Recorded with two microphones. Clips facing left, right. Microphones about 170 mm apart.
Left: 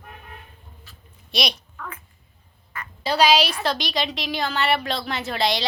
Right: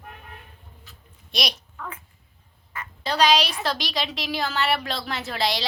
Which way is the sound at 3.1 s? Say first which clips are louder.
Left 2 dB; 10° left (ahead or behind).